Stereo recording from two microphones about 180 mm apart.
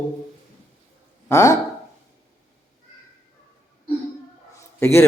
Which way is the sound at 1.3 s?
15° left (ahead or behind).